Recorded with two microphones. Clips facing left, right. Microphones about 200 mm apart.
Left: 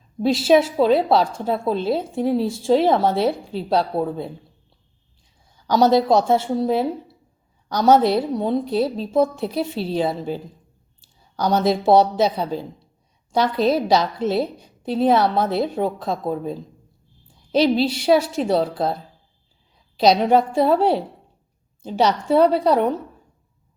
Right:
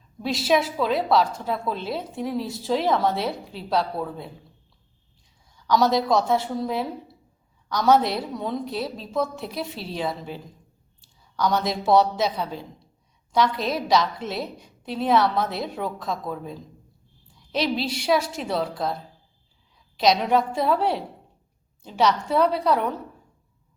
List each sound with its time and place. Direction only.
0.2 s a woman's voice: 30° left (ahead or behind)
5.6 s a woman's voice: 30° left (ahead or behind)
20.0 s a woman's voice: 35° left (ahead or behind)